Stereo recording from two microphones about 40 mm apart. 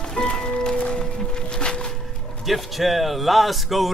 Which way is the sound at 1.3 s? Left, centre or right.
Left.